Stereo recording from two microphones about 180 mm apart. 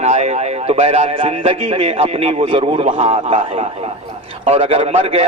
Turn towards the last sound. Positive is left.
turn(degrees=-35)  # may be behind; listen again after turning